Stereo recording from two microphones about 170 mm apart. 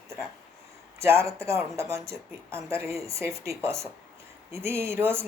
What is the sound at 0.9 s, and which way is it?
A woman's voice, 15° right (ahead or behind).